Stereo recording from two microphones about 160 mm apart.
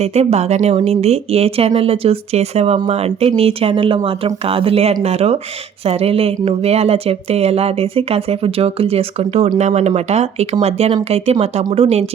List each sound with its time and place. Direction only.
0.0 s speech: 40° right (ahead or behind)